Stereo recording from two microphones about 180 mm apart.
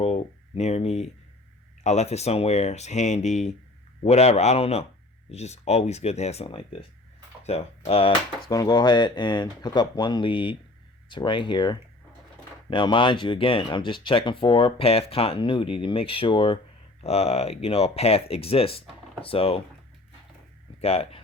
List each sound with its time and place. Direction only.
0.0 s a sound: 35° left (ahead or behind)
1.8 s speech: 40° left (ahead or behind)
8.4 s speech: 20° left (ahead or behind)
20.8 s speech: 35° left (ahead or behind)